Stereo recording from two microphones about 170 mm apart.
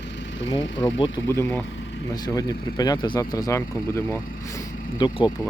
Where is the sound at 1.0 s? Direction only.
20° left (ahead or behind).